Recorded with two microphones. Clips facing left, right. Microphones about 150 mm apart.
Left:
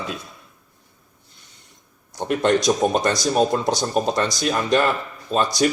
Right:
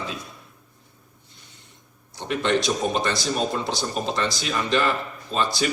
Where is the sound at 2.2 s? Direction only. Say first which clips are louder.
Left 4 dB; 45° left (ahead or behind).